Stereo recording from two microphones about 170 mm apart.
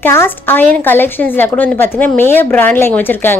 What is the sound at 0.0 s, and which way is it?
A woman's voice, 15° left (ahead or behind).